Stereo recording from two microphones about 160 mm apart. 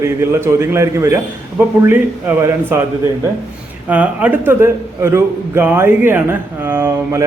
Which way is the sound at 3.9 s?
10° right (ahead or behind).